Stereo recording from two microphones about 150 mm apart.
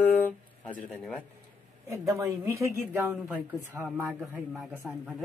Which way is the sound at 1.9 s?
20° right (ahead or behind).